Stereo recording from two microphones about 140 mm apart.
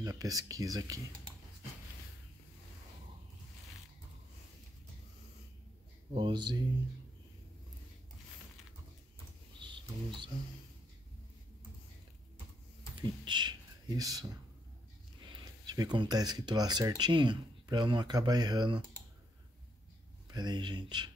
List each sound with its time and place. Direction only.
0.0 s speech: 25° right (ahead or behind)
6.1 s speech: 35° right (ahead or behind)
9.6 s a sound: 35° right (ahead or behind)
12.9 s speech: 35° right (ahead or behind)
20.2 s speech: 30° right (ahead or behind)